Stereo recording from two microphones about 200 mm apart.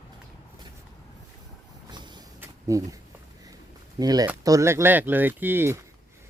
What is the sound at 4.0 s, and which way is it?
A man's voice, 20° right (ahead or behind).